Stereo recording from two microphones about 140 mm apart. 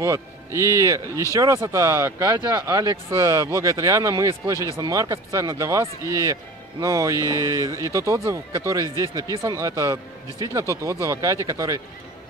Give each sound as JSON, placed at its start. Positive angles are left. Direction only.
{"t": 0.0, "sound": "speech", "side_deg": -20}